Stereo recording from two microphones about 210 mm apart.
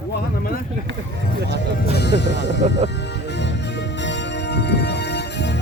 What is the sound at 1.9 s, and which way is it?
Music, 50° left (ahead or behind).